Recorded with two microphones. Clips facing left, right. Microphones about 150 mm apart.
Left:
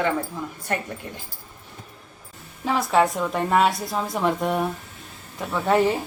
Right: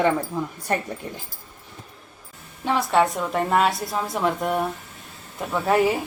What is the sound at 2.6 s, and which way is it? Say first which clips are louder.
A woman's voice: even; centre (ahead or behind).